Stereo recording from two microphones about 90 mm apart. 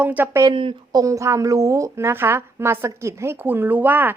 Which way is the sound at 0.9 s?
40° right (ahead or behind).